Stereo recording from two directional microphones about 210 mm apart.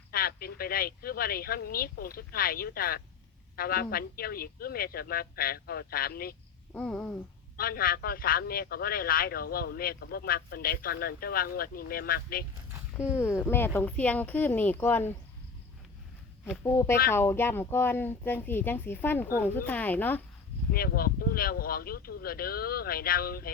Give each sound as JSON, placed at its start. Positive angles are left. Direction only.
{"t": 0.1, "sound": "a man's voice", "side_deg": 45}
{"t": 6.7, "sound": "a sound", "side_deg": 5}
{"t": 7.5, "sound": "a man's voice", "side_deg": 45}
{"t": 13.1, "sound": "speech", "side_deg": 10}
{"t": 16.6, "sound": "speech", "side_deg": 10}
{"t": 20.7, "sound": "a man's voice", "side_deg": 45}